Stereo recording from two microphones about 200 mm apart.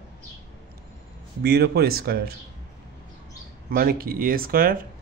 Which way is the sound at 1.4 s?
50° right (ahead or behind).